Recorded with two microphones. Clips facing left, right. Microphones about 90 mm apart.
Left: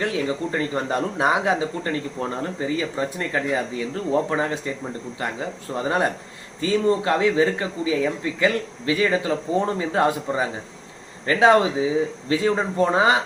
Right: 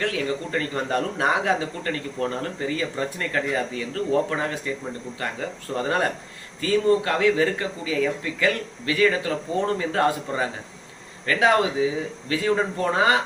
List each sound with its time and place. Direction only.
0.0 s a man's voice: 20° left (ahead or behind)